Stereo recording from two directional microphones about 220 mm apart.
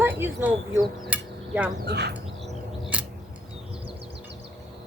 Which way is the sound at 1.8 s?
50° right (ahead or behind).